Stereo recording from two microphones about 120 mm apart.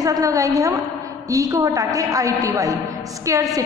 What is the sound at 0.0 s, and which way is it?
A woman's voice, 30° right (ahead or behind).